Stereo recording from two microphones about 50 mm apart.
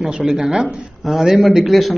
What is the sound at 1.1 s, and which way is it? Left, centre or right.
Speech, centre.